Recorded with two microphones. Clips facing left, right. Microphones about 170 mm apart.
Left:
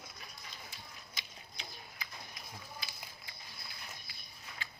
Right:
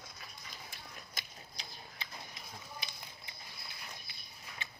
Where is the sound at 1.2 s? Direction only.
50° right (ahead or behind).